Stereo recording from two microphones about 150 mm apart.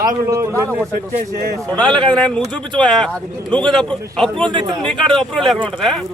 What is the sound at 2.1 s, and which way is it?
Speech, 5° left (ahead or behind).